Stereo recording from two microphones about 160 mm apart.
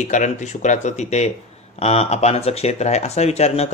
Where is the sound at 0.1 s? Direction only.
50° left (ahead or behind).